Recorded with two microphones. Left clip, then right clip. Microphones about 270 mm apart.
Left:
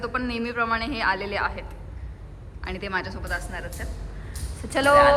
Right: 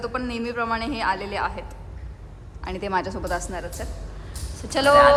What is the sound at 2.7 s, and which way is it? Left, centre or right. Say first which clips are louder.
A man's voice: right 3 dB; centre.